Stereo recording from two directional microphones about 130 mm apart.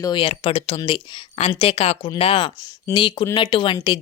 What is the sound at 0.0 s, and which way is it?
Speech, 40° left (ahead or behind).